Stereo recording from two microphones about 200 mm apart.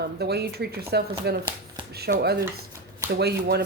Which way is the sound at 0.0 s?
55° right (ahead or behind).